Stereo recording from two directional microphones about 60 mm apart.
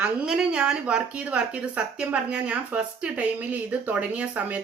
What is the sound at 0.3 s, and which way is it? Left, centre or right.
Speech, centre.